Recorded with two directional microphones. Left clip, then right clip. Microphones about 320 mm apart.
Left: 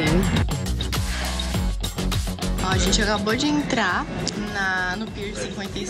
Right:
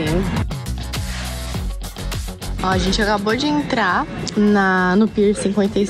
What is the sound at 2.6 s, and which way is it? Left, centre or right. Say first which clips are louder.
Speech: right 4 dB; centre.